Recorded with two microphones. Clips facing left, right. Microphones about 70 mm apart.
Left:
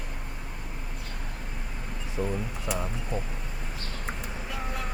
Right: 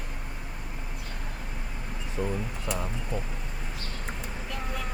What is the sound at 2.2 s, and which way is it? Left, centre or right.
Speech, centre.